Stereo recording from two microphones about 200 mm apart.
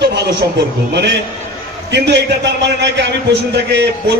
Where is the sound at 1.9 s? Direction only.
60° right (ahead or behind).